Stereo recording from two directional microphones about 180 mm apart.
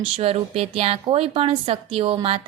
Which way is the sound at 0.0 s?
35° right (ahead or behind).